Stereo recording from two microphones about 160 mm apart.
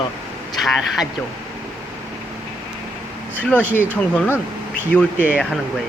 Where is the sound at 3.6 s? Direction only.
10° right (ahead or behind).